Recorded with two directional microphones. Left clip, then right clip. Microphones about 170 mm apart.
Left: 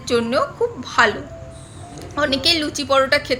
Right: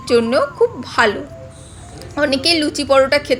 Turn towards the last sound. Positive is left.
turn(degrees=-20)  # may be behind; listen again after turning